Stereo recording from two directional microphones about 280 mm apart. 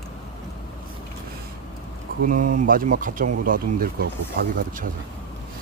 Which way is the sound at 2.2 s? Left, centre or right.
Right.